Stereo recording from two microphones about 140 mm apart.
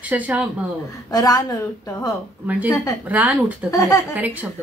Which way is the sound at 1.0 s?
25° left (ahead or behind).